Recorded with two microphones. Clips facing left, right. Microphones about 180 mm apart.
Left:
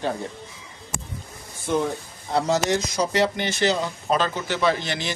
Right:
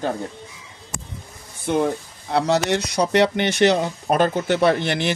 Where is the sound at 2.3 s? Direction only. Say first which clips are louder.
Right 2 dB; 65° right (ahead or behind).